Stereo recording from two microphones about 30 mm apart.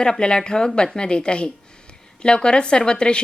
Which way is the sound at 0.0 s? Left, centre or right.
Left.